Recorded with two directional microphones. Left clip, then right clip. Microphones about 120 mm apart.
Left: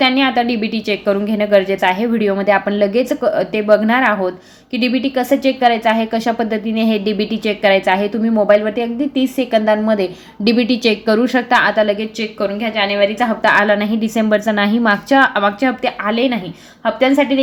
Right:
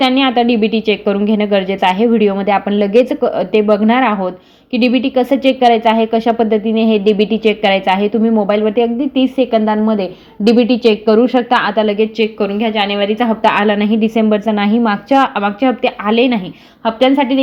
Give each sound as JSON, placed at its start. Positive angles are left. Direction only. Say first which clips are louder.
{"t": 0.0, "sound": "a woman's voice", "louder": "right 2 dB", "side_deg": -45}
{"t": 12.2, "sound": "a woman's voice", "louder": "right 4 dB", "side_deg": -75}
{"t": 15.4, "sound": "speech", "louder": "even", "side_deg": -30}
{"t": 15.8, "sound": "a woman's voice", "louder": "right 3 dB", "side_deg": -55}